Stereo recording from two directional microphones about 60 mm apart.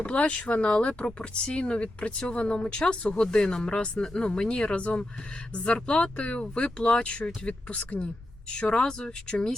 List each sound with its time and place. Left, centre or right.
0.0 s speech: left
3.9 s speech: centre